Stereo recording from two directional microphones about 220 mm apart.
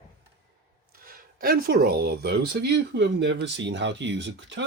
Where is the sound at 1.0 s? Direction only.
40° right (ahead or behind).